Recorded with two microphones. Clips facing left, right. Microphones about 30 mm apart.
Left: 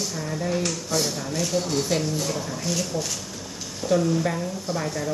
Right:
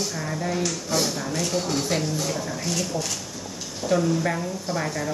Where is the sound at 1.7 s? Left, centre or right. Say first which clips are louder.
Left 1 dB; centre.